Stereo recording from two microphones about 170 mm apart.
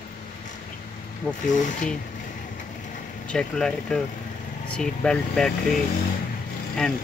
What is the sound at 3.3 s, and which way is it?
Speech, 5° left (ahead or behind).